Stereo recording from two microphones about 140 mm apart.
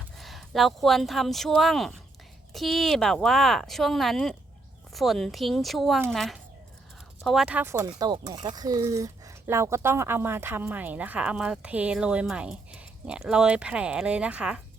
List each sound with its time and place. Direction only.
0.2 s speech: centre (ahead or behind); by 7.9 s 15° right (ahead or behind)
7.9 s speech: 30° right (ahead or behind); by 14.6 s 10° right (ahead or behind)